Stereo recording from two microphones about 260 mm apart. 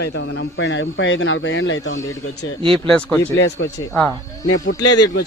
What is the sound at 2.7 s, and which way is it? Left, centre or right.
Speech, centre.